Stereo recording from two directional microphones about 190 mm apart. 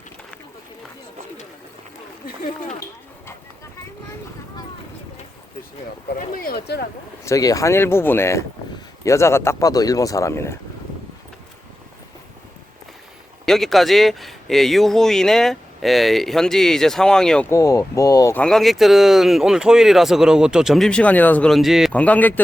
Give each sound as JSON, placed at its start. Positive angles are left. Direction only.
{"t": 6.1, "sound": "speech", "side_deg": 50}
{"t": 7.3, "sound": "speech", "side_deg": 15}
{"t": 13.4, "sound": "speech", "side_deg": 0}
{"t": 18.4, "sound": "speech", "side_deg": 0}